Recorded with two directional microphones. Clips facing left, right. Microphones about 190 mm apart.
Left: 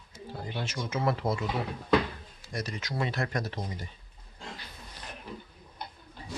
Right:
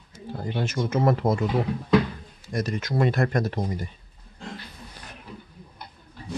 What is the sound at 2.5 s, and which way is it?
Speech, 50° right (ahead or behind).